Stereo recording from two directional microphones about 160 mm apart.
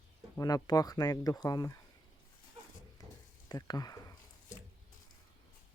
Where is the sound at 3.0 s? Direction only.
20° left (ahead or behind).